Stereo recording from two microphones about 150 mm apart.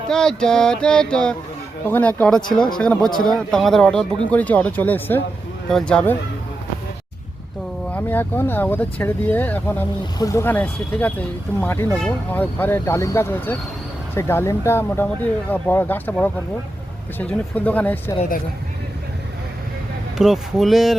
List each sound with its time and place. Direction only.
0.1 s speech: 5° left (ahead or behind)
7.9 s speech: 15° left (ahead or behind)
17.2 s speech: 10° left (ahead or behind)
20.1 s speech: centre (ahead or behind)